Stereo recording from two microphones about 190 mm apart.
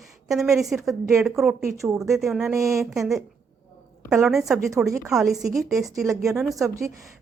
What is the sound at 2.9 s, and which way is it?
A woman's voice, centre (ahead or behind).